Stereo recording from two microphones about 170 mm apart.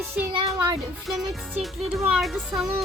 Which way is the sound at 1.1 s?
Centre (ahead or behind).